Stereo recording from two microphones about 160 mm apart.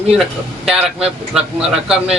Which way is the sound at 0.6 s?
5° right (ahead or behind).